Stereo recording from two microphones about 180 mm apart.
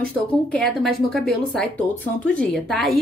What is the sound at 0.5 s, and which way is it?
A woman's voice, 5° left (ahead or behind).